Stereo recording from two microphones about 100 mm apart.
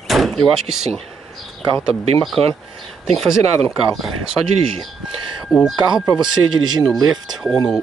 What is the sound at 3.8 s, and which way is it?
Speech, 5° right (ahead or behind).